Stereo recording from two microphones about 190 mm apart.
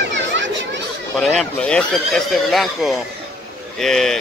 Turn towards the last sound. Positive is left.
turn(degrees=0)  # may be behind; listen again after turning